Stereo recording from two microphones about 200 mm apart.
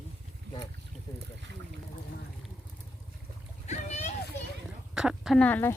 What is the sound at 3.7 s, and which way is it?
Splash, 35° left (ahead or behind).